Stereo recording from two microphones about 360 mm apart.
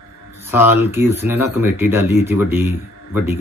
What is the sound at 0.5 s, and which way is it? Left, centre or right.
Speech, centre.